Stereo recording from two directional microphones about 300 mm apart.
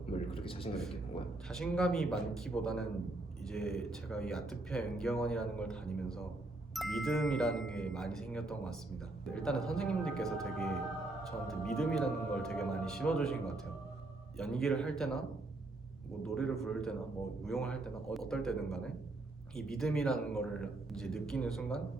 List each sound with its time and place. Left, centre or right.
0.3 s a sound: centre
1.5 s speech: centre
16.2 s speech: centre